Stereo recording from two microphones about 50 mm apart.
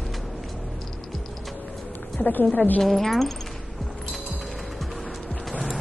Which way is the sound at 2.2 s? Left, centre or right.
Left.